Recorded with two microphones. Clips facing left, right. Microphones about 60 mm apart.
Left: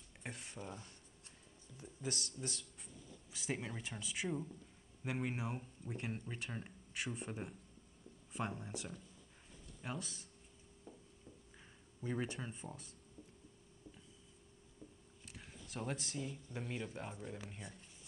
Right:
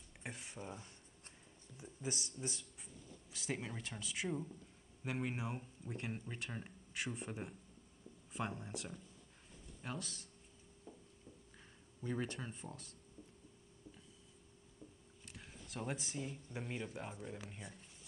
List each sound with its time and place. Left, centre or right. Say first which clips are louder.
0.2 s speech: even; centre
2.4 s speech: right 1 dB; right
3.3 s speech: left 1 dB; centre
10.9 s a sound: even; centre
12.0 s speech: even; centre
15.2 s speech: even; centre